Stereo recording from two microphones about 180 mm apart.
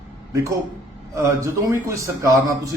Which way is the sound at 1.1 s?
15° right (ahead or behind).